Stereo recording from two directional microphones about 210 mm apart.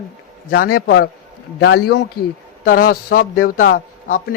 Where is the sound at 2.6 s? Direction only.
40° left (ahead or behind).